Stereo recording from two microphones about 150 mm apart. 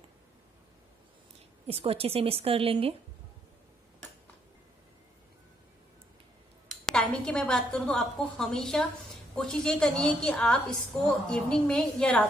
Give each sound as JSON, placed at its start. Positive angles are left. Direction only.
{"t": 1.7, "sound": "a woman's voice", "side_deg": -40}
{"t": 6.7, "sound": "a woman's voice", "side_deg": 0}